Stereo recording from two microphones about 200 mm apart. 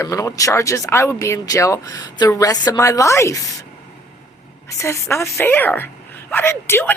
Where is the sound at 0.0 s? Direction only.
15° left (ahead or behind).